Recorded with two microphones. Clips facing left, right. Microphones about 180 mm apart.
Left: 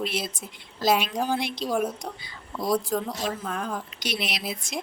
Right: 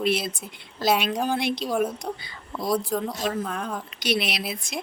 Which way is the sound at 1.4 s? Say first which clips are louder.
Right 4 dB; 65° right (ahead or behind).